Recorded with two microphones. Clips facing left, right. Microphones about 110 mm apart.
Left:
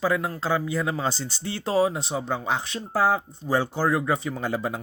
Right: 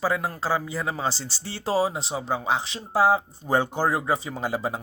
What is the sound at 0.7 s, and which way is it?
Speech, 5° right (ahead or behind).